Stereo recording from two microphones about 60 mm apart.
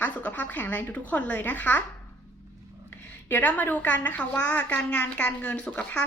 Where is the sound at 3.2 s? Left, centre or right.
Left.